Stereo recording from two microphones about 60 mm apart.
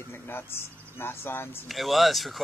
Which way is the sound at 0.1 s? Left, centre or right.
Left.